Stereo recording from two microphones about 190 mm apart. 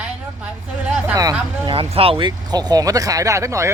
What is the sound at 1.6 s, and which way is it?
Speech, 30° right (ahead or behind).